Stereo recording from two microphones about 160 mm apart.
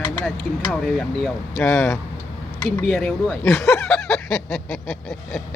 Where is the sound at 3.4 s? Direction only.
15° left (ahead or behind).